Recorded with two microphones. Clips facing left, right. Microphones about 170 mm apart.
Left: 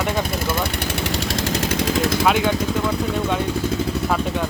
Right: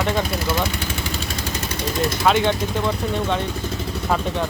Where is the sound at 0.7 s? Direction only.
70° left (ahead or behind); by 1.9 s 90° left.